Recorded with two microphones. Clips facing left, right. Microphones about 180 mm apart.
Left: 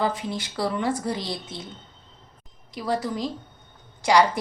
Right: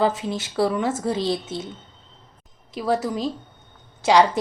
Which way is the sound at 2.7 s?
20° right (ahead or behind).